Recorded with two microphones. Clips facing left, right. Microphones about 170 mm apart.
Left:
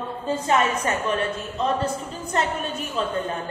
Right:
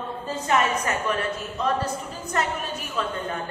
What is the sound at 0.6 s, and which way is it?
Speech, 25° left (ahead or behind).